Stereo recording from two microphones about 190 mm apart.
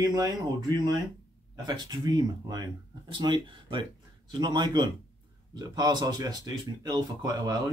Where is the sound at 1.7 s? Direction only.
20° right (ahead or behind).